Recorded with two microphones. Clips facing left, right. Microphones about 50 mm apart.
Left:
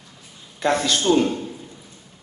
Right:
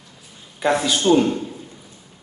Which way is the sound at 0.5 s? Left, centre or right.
Centre.